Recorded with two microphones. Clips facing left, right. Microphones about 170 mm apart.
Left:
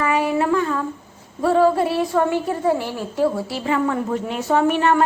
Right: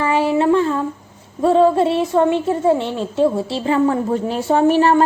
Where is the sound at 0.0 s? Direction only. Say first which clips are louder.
Right 3 dB; 30° right (ahead or behind).